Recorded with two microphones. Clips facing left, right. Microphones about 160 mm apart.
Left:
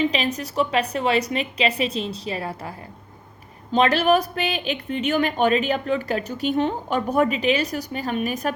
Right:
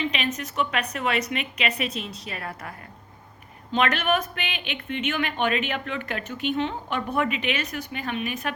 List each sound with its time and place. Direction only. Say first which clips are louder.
0.0 s speech: left 5 dB; 35° left (ahead or behind)